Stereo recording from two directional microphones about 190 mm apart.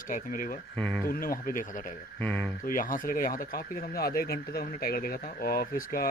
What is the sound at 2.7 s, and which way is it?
Speech, 45° left (ahead or behind).